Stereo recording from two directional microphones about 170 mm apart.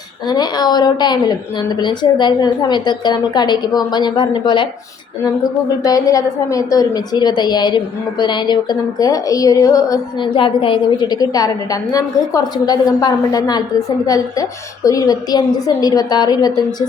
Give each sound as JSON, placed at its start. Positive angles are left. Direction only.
{"t": 0.3, "sound": "a woman's voice", "side_deg": 25}